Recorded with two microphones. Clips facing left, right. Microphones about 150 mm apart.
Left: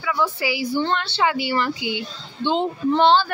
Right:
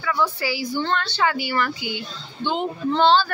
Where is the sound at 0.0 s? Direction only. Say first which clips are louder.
Even; 10° left (ahead or behind).